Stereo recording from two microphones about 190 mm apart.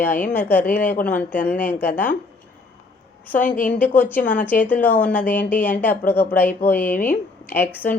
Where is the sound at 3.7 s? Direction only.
10° left (ahead or behind).